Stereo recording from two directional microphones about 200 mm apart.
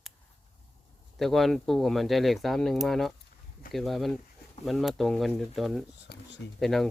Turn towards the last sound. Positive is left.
turn(degrees=0)  # may be behind; listen again after turning